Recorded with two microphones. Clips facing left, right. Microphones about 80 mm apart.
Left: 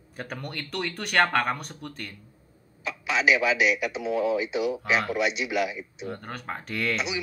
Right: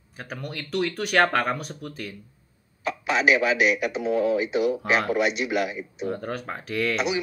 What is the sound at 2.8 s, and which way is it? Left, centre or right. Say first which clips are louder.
A man's voice: right 2 dB; right.